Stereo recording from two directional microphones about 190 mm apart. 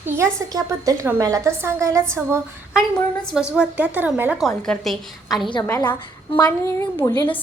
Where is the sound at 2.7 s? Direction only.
Centre (ahead or behind).